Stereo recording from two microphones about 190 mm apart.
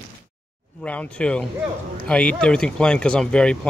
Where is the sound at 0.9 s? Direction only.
5° left (ahead or behind).